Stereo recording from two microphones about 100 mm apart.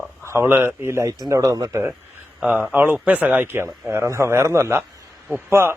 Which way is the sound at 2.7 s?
20° right (ahead or behind).